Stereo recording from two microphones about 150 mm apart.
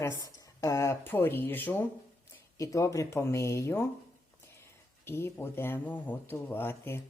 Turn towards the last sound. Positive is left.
turn(degrees=15)  # may be behind; listen again after turning